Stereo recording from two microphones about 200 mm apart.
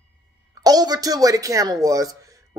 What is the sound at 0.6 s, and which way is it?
A man's voice, 20° right (ahead or behind).